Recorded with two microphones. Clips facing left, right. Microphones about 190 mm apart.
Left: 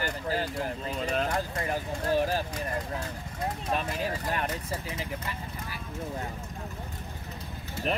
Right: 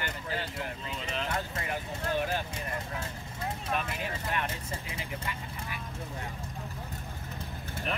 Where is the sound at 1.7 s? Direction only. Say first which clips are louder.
Left 5 dB; 35° left (ahead or behind).